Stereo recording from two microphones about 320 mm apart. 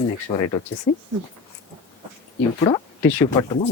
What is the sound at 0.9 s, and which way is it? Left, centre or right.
Speech, left.